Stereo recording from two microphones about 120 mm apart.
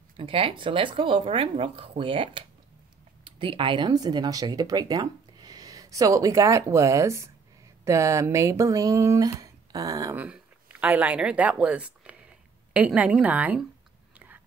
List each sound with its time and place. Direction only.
0.2 s speech: 50° right (ahead or behind); by 10.1 s 30° right (ahead or behind)
10.1 s speech: 10° right (ahead or behind)
14.1 s a sound: 15° right (ahead or behind)